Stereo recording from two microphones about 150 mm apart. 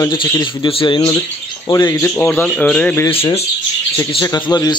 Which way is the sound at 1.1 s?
20° left (ahead or behind).